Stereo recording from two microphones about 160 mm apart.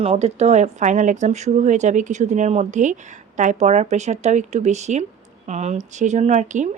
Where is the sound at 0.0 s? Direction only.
40° right (ahead or behind).